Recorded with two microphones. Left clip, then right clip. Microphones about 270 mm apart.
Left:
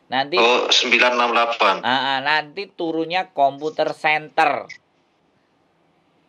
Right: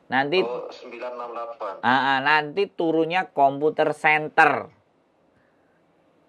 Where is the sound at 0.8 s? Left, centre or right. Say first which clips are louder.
Left 17 dB; left.